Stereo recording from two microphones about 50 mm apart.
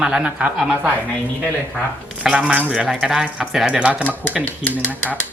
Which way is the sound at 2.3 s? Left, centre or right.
Right.